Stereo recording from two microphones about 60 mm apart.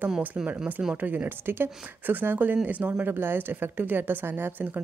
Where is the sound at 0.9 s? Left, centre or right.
Right.